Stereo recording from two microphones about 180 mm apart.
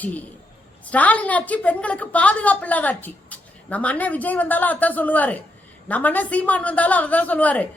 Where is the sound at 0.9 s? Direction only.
10° left (ahead or behind).